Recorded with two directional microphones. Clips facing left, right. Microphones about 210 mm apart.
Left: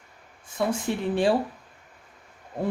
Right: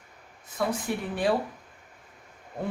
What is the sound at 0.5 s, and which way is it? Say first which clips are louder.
Speech: left 2 dB; 30° left (ahead or behind).